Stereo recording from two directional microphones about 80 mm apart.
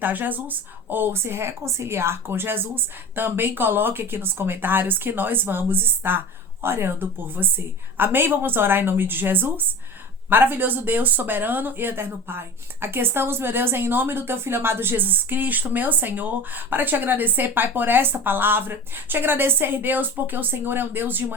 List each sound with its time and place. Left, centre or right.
0.0 s speech: right